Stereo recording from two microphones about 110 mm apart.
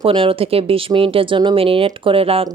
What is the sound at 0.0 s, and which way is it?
A woman's voice, 55° right (ahead or behind).